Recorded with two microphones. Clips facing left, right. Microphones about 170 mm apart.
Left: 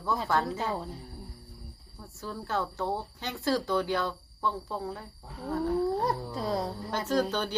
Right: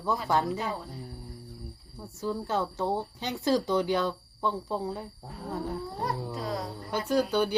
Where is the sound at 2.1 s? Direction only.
20° right (ahead or behind).